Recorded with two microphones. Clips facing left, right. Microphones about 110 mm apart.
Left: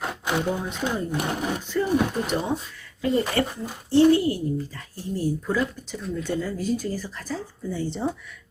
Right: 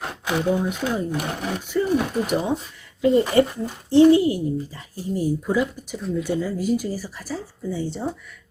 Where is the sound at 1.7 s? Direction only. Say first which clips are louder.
Right 2 dB; 5° right (ahead or behind).